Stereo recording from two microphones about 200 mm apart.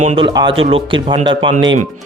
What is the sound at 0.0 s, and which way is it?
Speech, 30° right (ahead or behind).